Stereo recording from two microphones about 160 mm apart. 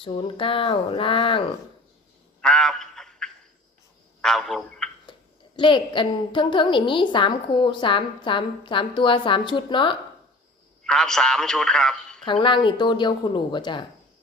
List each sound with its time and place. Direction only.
0.0 s a woman's voice: 35° left (ahead or behind)
2.4 s a sound: 5° left (ahead or behind)
5.5 s a woman's voice: 30° left (ahead or behind)
10.8 s a man's voice: 5° left (ahead or behind)
12.2 s speech: 30° left (ahead or behind)